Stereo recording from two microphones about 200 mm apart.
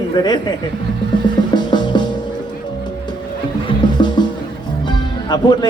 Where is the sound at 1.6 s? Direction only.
20° left (ahead or behind).